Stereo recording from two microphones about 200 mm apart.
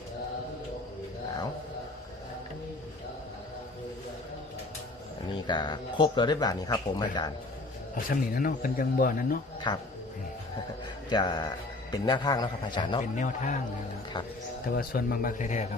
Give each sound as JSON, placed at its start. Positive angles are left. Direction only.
{"t": 5.3, "sound": "speech", "side_deg": 20}
{"t": 7.9, "sound": "speech", "side_deg": 45}
{"t": 9.7, "sound": "speech", "side_deg": 20}
{"t": 11.1, "sound": "speech", "side_deg": 20}
{"t": 13.0, "sound": "a man's voice", "side_deg": 40}
{"t": 14.7, "sound": "speech", "side_deg": 45}